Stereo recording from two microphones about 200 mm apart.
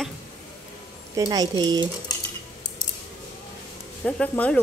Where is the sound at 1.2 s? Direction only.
20° right (ahead or behind).